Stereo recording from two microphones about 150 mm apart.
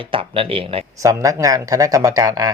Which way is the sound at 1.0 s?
20° right (ahead or behind).